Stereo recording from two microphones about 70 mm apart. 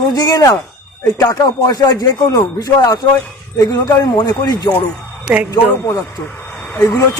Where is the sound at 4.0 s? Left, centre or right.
Left.